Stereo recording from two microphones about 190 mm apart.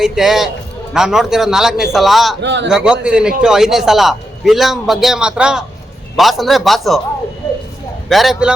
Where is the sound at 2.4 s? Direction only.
65° right (ahead or behind).